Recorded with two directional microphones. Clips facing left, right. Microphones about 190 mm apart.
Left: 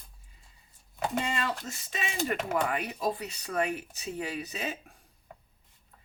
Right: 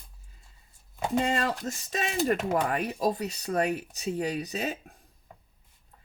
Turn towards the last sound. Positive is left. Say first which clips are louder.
# right 5 dB
turn(degrees=-40)  # may be behind; listen again after turning